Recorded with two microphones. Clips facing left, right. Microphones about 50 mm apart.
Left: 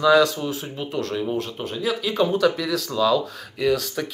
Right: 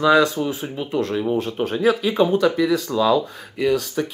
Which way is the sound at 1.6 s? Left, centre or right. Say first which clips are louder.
Right 8 dB; right.